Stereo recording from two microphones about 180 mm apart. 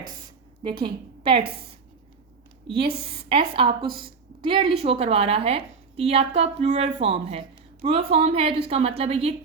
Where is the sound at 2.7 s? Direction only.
30° right (ahead or behind).